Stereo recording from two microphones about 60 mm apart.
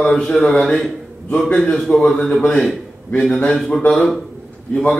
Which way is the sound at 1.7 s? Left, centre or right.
Centre.